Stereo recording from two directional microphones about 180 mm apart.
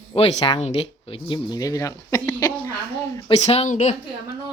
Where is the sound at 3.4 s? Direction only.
35° left (ahead or behind).